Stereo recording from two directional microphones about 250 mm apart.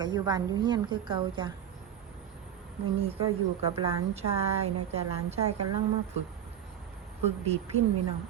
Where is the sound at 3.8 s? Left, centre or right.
Right.